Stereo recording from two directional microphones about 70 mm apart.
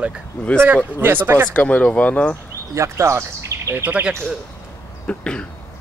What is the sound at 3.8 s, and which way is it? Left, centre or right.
Speech, right.